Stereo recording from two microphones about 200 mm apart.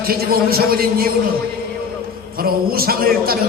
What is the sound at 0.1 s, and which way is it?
Speech, 50° right (ahead or behind).